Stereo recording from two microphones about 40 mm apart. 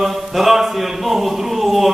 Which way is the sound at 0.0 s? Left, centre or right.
Centre.